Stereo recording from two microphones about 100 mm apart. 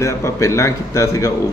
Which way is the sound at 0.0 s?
30° left (ahead or behind).